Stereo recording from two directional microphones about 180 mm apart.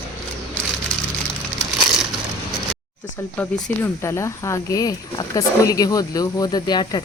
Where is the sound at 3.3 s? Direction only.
10° left (ahead or behind).